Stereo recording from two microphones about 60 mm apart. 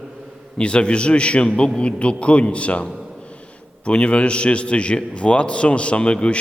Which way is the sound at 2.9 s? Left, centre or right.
Centre.